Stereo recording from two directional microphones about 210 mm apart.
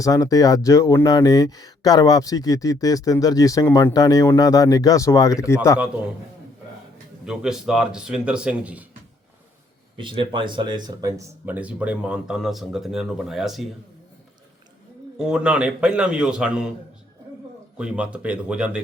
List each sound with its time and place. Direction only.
0.0 s speech: 15° left (ahead or behind)
7.3 s speech: 5° right (ahead or behind)
10.0 s speech: 25° right (ahead or behind); by 13.7 s centre (ahead or behind)
15.2 s speech: 5° right (ahead or behind)
17.7 s speech: 5° right (ahead or behind)